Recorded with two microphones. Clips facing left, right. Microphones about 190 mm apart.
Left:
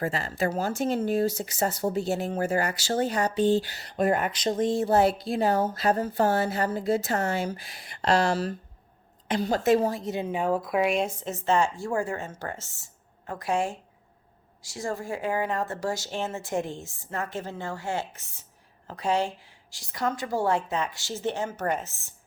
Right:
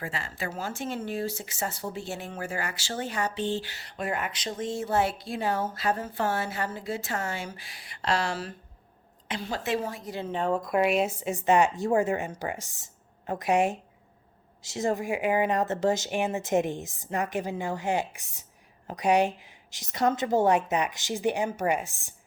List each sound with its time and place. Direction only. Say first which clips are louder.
0.0 s a woman's voice: left 7 dB; 40° left (ahead or behind)
10.1 s speech: left 2 dB; 15° left (ahead or behind); by 22.1 s 15° right (ahead or behind)